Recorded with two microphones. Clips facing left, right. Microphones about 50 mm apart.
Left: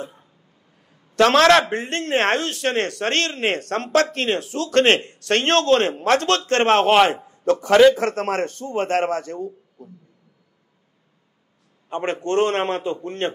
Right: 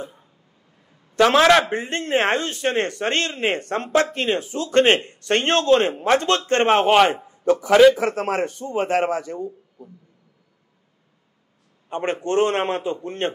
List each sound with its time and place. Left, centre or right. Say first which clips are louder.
0.8 s a sound: even; centre
1.6 s speech: even; centre
6.9 s a man's voice: even; centre
12.1 s speech: even; centre
12.5 s a man's voice: even; right